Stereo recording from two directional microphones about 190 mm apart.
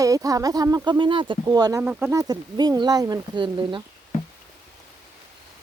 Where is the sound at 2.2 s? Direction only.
20° right (ahead or behind).